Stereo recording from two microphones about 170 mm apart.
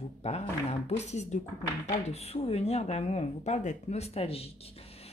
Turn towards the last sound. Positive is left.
turn(degrees=35)  # may be behind; listen again after turning